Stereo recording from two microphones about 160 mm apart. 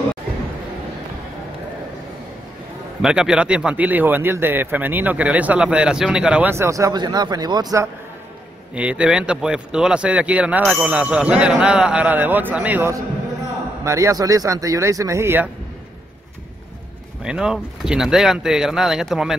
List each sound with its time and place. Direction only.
3.0 s speech: 5° right (ahead or behind); by 7.9 s 20° right (ahead or behind)
8.7 s speech: 10° right (ahead or behind)
17.2 s speech: 5° right (ahead or behind)